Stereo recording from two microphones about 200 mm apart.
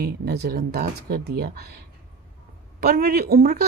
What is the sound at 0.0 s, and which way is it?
A woman's voice, 50° right (ahead or behind).